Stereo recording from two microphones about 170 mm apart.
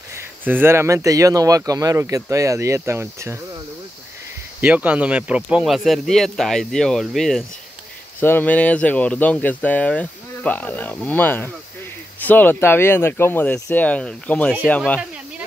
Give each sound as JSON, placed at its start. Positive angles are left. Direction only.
{"t": 0.5, "sound": "speech", "side_deg": -15}
{"t": 4.6, "sound": "speech", "side_deg": -10}
{"t": 8.2, "sound": "speech", "side_deg": 10}